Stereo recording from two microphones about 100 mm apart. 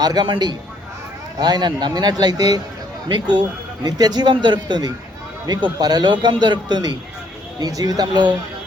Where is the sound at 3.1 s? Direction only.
50° right (ahead or behind).